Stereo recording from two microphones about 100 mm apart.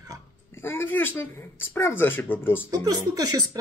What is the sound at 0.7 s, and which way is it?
Speech, 25° left (ahead or behind).